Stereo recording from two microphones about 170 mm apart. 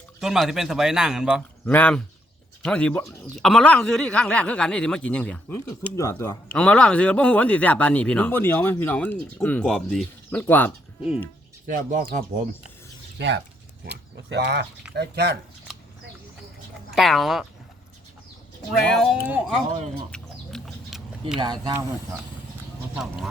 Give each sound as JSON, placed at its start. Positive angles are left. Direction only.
{"t": 0.2, "sound": "speech", "side_deg": 0}
{"t": 1.6, "sound": "speech", "side_deg": 10}
{"t": 6.5, "sound": "speech", "side_deg": 5}
{"t": 11.6, "sound": "speech", "side_deg": -50}
{"t": 13.1, "sound": "speech", "side_deg": -90}
{"t": 14.9, "sound": "speech", "side_deg": -75}
{"t": 16.9, "sound": "speech", "side_deg": 0}
{"t": 18.9, "sound": "speech", "side_deg": 5}
{"t": 20.1, "sound": "chicken", "side_deg": 5}
{"t": 21.4, "sound": "speech", "side_deg": -25}